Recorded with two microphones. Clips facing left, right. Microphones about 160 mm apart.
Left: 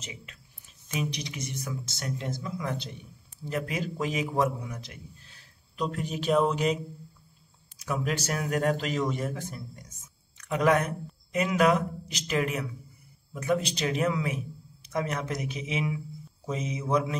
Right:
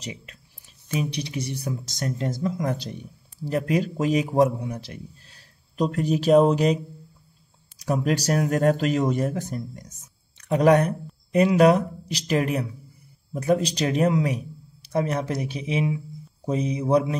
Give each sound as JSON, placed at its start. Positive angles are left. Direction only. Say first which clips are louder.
{"t": 0.0, "sound": "a man's voice", "louder": "right 7 dB", "side_deg": -35}
{"t": 7.8, "sound": "a man's voice", "louder": "right 7 dB", "side_deg": -35}